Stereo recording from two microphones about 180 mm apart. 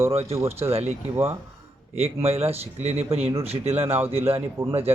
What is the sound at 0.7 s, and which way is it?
Speech, 35° right (ahead or behind).